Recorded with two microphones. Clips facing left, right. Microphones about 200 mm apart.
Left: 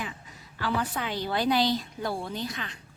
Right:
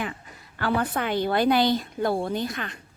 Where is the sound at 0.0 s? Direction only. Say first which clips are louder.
Right 5 dB; 60° right (ahead or behind).